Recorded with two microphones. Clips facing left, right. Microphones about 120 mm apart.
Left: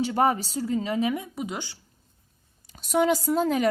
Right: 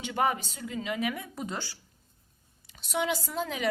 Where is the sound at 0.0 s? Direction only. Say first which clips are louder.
Left 6 dB; 35° left (ahead or behind); by 1.8 s 20° left (ahead or behind).